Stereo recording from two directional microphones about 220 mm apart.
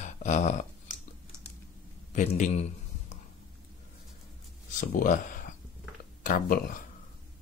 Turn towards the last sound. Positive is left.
turn(degrees=40)  # may be behind; listen again after turning